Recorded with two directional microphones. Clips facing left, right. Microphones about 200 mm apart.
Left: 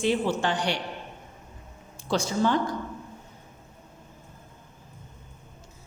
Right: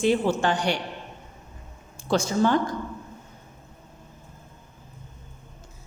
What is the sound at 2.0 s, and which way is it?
Speech, 50° right (ahead or behind).